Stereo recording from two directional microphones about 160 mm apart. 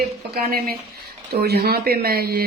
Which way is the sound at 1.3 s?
80° right.